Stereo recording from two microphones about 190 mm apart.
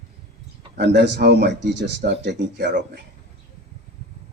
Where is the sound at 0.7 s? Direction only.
65° right (ahead or behind).